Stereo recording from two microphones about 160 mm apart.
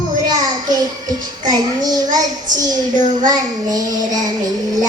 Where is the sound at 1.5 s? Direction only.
25° right (ahead or behind).